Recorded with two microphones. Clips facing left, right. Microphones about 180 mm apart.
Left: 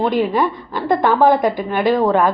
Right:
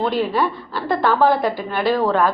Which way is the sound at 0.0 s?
15° left (ahead or behind).